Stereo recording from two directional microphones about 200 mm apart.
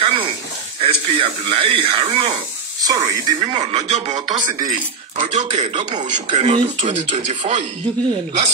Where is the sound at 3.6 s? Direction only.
35° right (ahead or behind).